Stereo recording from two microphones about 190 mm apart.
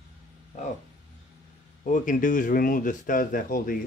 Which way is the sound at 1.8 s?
45° left (ahead or behind).